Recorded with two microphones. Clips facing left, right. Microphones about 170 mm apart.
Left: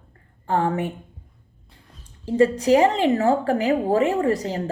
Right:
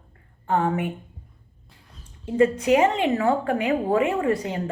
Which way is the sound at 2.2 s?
35° left (ahead or behind).